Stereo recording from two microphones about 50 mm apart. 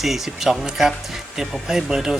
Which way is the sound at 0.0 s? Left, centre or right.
Centre.